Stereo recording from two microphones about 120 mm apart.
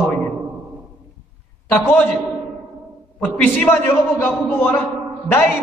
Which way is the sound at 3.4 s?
15° left (ahead or behind).